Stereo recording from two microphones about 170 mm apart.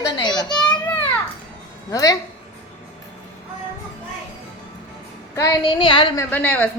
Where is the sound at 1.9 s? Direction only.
20° left (ahead or behind).